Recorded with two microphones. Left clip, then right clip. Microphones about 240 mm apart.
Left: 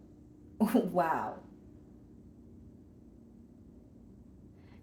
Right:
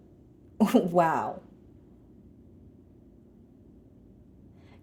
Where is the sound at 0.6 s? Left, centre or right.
Right.